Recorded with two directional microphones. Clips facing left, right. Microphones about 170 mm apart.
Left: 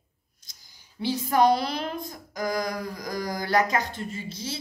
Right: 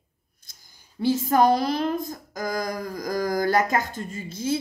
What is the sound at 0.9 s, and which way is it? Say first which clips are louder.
Speech: right 3 dB; 45° right (ahead or behind).